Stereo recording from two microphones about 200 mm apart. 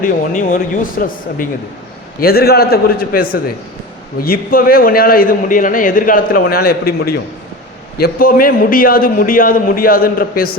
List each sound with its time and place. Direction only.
0.0 s a man's voice: 40° left (ahead or behind)